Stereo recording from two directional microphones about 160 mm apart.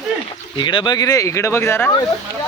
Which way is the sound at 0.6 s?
30° left (ahead or behind).